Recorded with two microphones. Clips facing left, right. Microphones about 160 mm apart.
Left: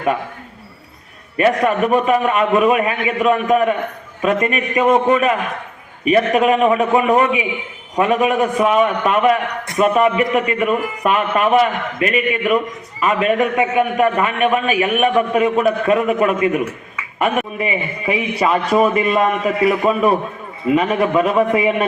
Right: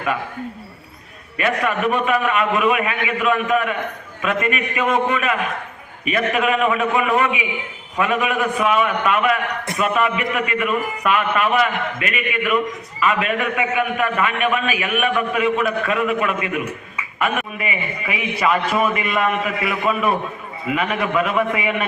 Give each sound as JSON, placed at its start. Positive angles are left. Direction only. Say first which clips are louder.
{"t": 1.4, "sound": "a man's voice", "louder": "left 6 dB", "side_deg": 35}